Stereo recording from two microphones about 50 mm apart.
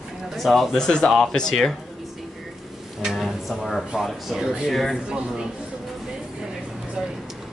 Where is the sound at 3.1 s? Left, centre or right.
Centre.